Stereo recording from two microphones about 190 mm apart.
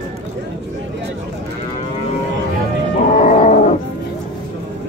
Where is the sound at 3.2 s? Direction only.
40° left (ahead or behind).